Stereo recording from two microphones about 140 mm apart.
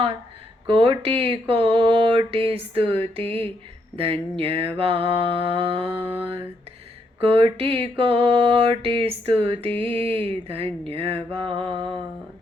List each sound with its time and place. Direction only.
0.7 s mantra: 40° right (ahead or behind)
7.2 s mantra: 40° right (ahead or behind)